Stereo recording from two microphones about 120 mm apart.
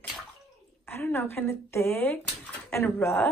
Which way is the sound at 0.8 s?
20° left (ahead or behind).